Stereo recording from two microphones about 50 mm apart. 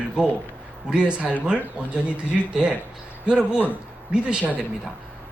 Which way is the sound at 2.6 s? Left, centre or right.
Right.